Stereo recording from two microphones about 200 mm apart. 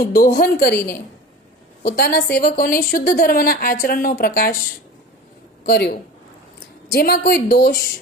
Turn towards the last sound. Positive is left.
turn(degrees=45)  # may be behind; listen again after turning